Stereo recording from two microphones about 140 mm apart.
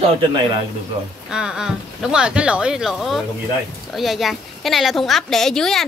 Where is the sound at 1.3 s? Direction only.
5° right (ahead or behind).